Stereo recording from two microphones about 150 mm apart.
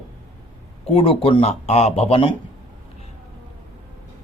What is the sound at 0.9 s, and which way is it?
Speech, 40° left (ahead or behind).